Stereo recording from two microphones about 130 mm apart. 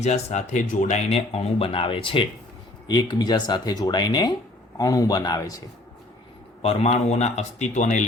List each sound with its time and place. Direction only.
0.0 s speech: 60° left (ahead or behind); by 5.6 s 30° left (ahead or behind)
6.6 s a man's voice: 50° left (ahead or behind); by 8.0 s 65° left (ahead or behind)